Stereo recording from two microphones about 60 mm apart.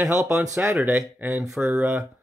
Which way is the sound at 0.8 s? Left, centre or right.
Right.